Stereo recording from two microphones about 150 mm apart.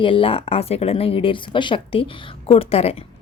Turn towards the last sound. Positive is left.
turn(degrees=40)  # may be behind; listen again after turning